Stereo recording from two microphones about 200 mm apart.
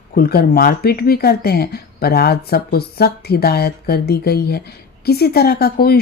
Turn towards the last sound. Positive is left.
turn(degrees=50)  # may be behind; listen again after turning